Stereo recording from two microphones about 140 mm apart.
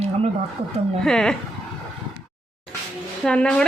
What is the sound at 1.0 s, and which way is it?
Speech, 5° left (ahead or behind).